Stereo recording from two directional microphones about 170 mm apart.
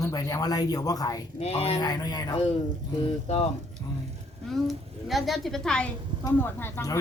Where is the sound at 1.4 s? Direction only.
35° left (ahead or behind).